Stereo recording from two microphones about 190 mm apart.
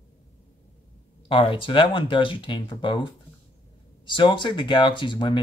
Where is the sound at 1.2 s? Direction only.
25° left (ahead or behind).